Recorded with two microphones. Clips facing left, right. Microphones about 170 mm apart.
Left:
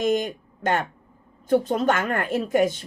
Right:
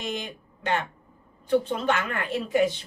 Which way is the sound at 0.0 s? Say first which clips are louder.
Left 10 dB; 45° left (ahead or behind).